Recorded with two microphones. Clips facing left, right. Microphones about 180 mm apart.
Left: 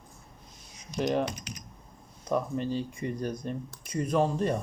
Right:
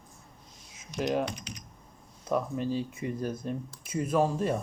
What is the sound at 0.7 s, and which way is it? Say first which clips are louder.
Computer keyboard: left 1 dB; 5° right (ahead or behind).